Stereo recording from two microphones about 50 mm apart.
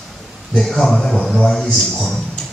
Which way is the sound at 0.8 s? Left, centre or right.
Centre.